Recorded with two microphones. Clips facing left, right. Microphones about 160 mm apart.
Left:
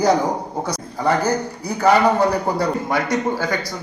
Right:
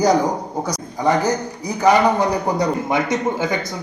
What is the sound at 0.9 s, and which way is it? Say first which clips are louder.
A man's voice: right 1 dB; 15° right (ahead or behind).